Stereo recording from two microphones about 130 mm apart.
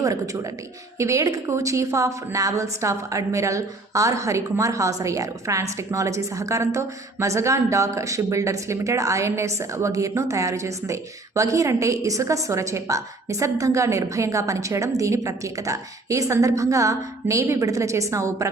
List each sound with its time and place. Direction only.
0.9 s a woman's voice: 25° right (ahead or behind)